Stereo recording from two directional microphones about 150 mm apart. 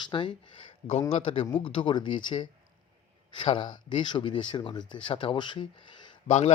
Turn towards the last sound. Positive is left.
turn(degrees=50)  # may be behind; listen again after turning